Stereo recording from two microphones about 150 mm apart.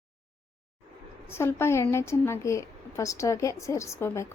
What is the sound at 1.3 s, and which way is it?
A woman's voice, 15° left (ahead or behind).